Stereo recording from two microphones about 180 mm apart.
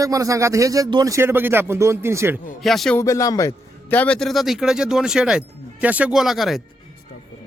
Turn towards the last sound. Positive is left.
turn(degrees=0)  # may be behind; listen again after turning